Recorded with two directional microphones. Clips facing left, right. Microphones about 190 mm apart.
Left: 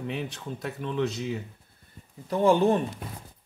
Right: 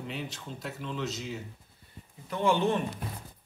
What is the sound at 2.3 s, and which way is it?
Speech, 40° left (ahead or behind).